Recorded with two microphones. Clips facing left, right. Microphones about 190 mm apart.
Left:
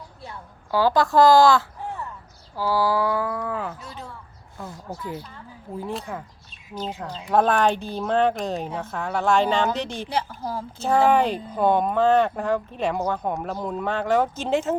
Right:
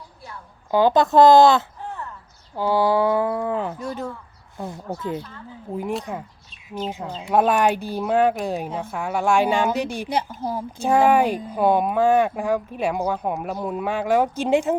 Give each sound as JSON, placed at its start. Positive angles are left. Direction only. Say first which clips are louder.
{"t": 0.7, "sound": "speech", "louder": "right 3 dB", "side_deg": -20}
{"t": 3.8, "sound": "speech", "louder": "right 10 dB", "side_deg": -45}
{"t": 4.5, "sound": "speech", "louder": "right 5 dB", "side_deg": -25}
{"t": 6.8, "sound": "a woman's voice", "louder": "right 2 dB", "side_deg": -10}